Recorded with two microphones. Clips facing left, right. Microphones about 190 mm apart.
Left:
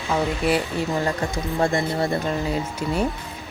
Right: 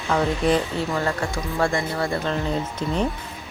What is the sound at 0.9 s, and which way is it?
Speech, 20° left (ahead or behind).